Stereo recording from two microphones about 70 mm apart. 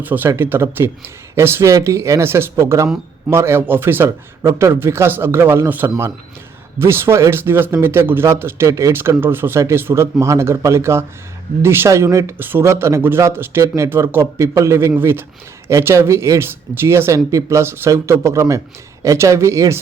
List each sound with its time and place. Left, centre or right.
0.0 s a man's voice: right
9.0 s speech: right
11.9 s speech: right
12.4 s speech: right
12.6 s speech: right